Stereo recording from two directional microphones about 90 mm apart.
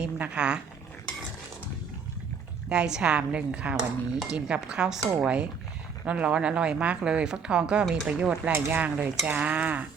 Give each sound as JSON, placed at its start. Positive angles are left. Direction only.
{"t": 0.0, "sound": "speech", "side_deg": -10}
{"t": 2.6, "sound": "speech", "side_deg": -10}
{"t": 8.5, "sound": "speech", "side_deg": -20}